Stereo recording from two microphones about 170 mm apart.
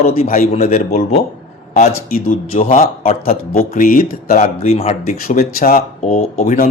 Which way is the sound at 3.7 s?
55° left (ahead or behind).